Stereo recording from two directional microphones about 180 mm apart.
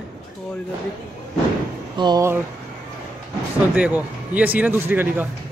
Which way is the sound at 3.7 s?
10° right (ahead or behind).